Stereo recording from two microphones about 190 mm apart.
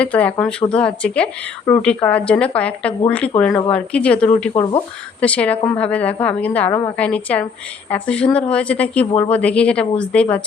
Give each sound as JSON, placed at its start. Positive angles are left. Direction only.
{"t": 0.0, "sound": "speech", "side_deg": 5}
{"t": 4.5, "sound": "speech", "side_deg": 30}
{"t": 5.2, "sound": "speech", "side_deg": 5}
{"t": 6.7, "sound": "speech", "side_deg": 15}
{"t": 6.9, "sound": "speech", "side_deg": 5}